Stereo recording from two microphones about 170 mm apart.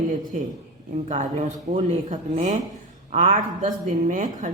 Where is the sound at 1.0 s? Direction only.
40° right (ahead or behind).